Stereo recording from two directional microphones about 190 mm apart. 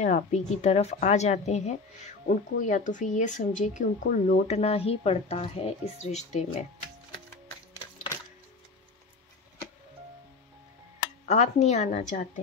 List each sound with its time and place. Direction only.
0.0 s speech: 40° left (ahead or behind)
11.2 s speech: 40° left (ahead or behind)